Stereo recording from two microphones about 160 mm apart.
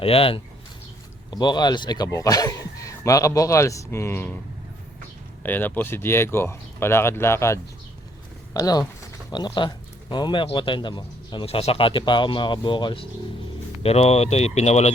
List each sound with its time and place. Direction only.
0.0 s speech: 35° left (ahead or behind); by 4.4 s 15° left (ahead or behind)
5.4 s speech: 10° left (ahead or behind); by 14.9 s 45° left (ahead or behind)